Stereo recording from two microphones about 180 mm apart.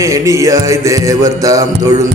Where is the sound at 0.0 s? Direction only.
15° right (ahead or behind).